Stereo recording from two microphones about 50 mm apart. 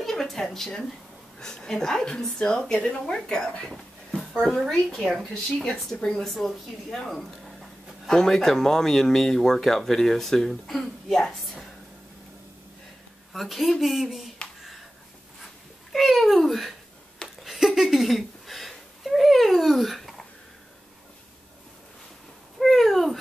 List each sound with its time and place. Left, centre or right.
0.0 s a sound: centre
1.4 s speech: centre
3.2 s speech: centre
6.3 s speech: centre
8.1 s speech: centre
13.3 s speech: centre
15.9 s speech: centre
17.4 s a sound: centre
22.6 s a sound: centre